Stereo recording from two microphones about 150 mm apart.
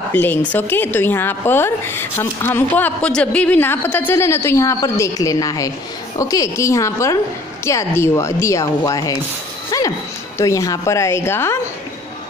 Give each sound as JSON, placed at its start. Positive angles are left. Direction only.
{"t": 0.1, "sound": "a woman's voice", "side_deg": 10}